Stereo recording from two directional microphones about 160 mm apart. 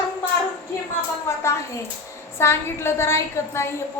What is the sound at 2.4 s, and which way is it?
A woman's voice, 15° left (ahead or behind).